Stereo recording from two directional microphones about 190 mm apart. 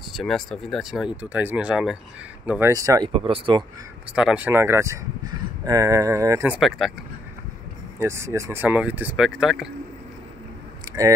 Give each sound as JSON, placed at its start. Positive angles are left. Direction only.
{"t": 0.1, "sound": "speech", "side_deg": 0}
{"t": 3.1, "sound": "speech", "side_deg": -30}
{"t": 4.1, "sound": "speech", "side_deg": -5}
{"t": 8.0, "sound": "speech", "side_deg": -15}
{"t": 10.9, "sound": "a sound", "side_deg": -15}